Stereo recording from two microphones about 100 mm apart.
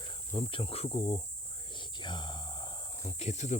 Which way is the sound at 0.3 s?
65° left (ahead or behind).